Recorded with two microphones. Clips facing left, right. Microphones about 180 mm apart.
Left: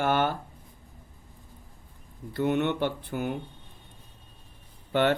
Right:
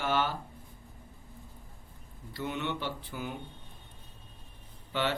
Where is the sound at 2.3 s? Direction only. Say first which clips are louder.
Left 9 dB; 55° left (ahead or behind).